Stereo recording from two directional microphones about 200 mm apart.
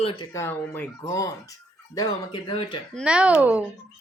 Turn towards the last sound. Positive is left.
turn(degrees=-5)  # may be behind; listen again after turning